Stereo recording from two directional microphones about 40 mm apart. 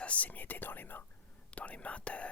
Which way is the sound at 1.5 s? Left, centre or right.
Left.